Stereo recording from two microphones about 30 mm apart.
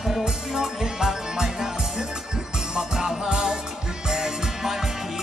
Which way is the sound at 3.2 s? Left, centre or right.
Right.